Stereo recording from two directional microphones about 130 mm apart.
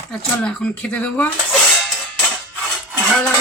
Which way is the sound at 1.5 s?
Centre (ahead or behind).